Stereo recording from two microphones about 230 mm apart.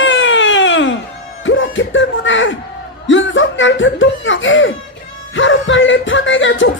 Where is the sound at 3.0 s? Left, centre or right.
Left.